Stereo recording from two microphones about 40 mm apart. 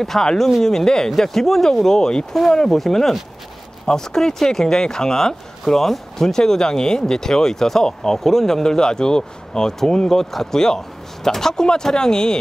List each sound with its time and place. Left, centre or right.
0.0 s speech: centre